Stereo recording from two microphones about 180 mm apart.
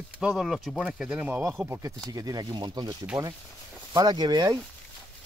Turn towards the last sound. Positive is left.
turn(degrees=-20)  # may be behind; listen again after turning